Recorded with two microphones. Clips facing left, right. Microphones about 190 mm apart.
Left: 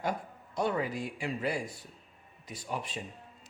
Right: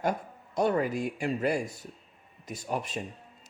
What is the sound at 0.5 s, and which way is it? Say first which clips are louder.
Speech: right 5 dB; 45° right (ahead or behind).